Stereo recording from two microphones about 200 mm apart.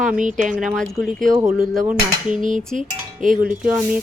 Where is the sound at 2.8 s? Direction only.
40° right (ahead or behind).